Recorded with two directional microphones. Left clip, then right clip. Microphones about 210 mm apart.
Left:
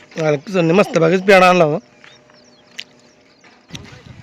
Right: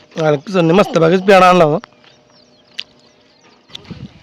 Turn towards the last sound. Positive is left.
turn(degrees=-5)  # may be behind; listen again after turning